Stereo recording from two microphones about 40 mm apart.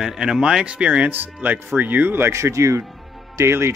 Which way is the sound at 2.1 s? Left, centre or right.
Right.